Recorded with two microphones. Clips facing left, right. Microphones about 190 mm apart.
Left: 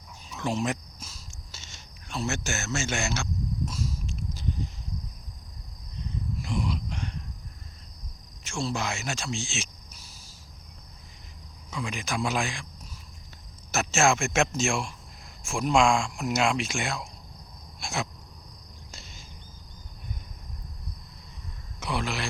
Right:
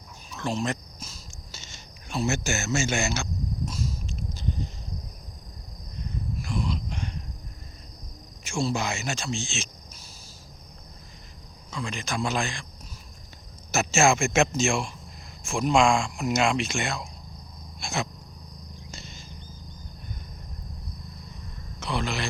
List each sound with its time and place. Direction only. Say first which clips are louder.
0.3 s speech: even; 15° left (ahead or behind); by 3.2 s centre (ahead or behind)
6.4 s speech: even; 15° left (ahead or behind)
8.4 s speech: right 3 dB; 5° right (ahead or behind)
11.7 s speech: even; 5° left (ahead or behind)
13.7 s speech: right 2 dB; centre (ahead or behind)
17.7 s a sound: right 2 dB; 5° left (ahead or behind)
18.9 s wild animals: right 3 dB; 5° left (ahead or behind)
21.8 s a sound: right 1 dB; 10° left (ahead or behind)